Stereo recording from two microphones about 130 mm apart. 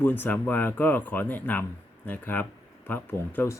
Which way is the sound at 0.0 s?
15° left (ahead or behind).